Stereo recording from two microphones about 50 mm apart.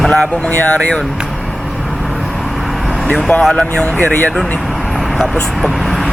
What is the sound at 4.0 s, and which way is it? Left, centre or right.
Speech, left.